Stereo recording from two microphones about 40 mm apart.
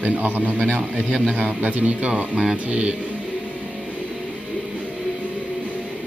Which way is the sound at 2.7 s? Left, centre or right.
Right.